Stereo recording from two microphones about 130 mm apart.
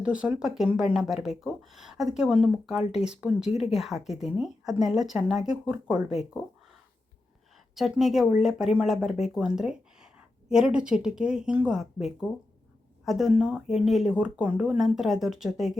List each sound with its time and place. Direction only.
0.0 s speech: 10° right (ahead or behind)
7.8 s speech: centre (ahead or behind)